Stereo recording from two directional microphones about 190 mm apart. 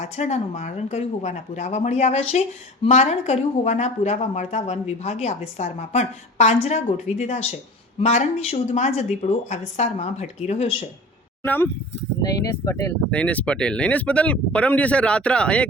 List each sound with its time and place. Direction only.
0.0 s speech: 35° left (ahead or behind)
11.4 s speech: 10° left (ahead or behind)